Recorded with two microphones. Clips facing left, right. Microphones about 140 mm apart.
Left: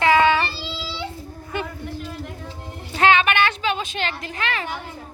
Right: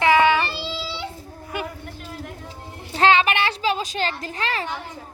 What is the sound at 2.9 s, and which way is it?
A woman's voice, 30° right (ahead or behind).